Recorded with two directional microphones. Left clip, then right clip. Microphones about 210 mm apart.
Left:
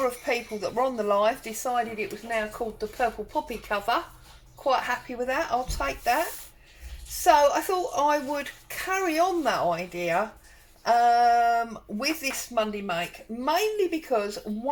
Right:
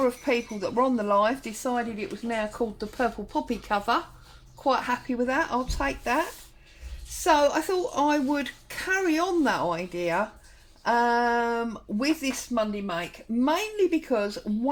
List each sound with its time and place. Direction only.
0.0 s speech: 40° right (ahead or behind)
7.3 s speech: 45° right (ahead or behind)